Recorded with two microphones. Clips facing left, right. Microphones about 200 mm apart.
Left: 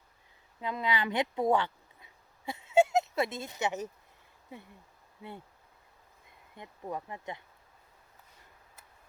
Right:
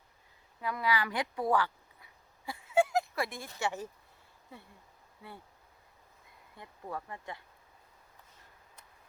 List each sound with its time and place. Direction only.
0.6 s a woman's voice: 20° left (ahead or behind)
2.5 s a sound: 25° left (ahead or behind)
6.6 s speech: 20° left (ahead or behind)